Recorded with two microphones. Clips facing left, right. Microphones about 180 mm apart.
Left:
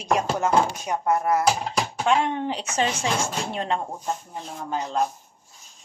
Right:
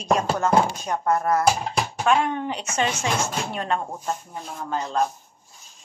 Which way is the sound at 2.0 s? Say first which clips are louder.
Right 1 dB; 25° left (ahead or behind).